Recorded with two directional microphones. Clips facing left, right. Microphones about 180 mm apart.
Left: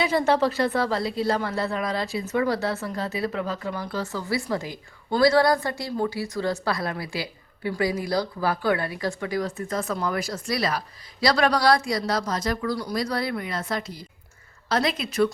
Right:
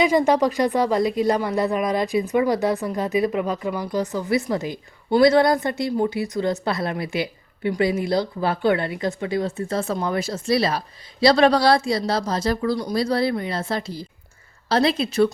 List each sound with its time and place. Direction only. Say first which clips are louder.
0.0 s speech: right 4 dB; 15° right (ahead or behind); by 15.3 s 30° right (ahead or behind)